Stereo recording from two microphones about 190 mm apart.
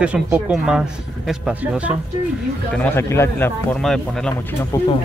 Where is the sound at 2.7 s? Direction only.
10° left (ahead or behind).